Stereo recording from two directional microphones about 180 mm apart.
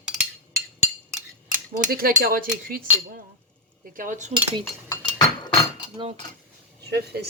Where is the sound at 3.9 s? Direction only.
45° right (ahead or behind).